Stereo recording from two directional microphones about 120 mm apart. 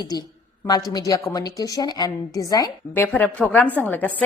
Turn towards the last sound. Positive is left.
turn(degrees=15)  # may be behind; listen again after turning